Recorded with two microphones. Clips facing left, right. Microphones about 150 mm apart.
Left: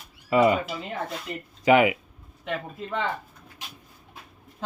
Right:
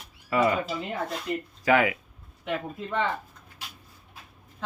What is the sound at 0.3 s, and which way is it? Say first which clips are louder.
Speech: left 4 dB; 20° left (ahead or behind).